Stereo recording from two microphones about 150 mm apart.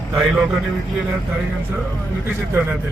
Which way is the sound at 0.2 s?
Centre (ahead or behind).